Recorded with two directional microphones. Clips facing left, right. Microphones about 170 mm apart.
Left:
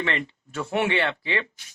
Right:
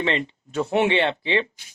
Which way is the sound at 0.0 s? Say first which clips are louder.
Right 4 dB; 20° right (ahead or behind).